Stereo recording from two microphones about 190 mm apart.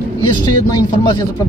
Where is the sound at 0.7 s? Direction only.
20° left (ahead or behind).